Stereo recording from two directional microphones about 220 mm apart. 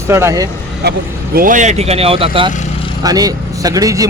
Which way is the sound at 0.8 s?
50° right (ahead or behind).